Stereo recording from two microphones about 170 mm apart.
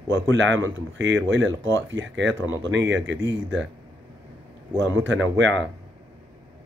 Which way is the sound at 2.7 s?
90° right.